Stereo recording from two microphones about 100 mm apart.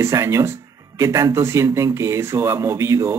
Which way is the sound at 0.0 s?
30° right (ahead or behind).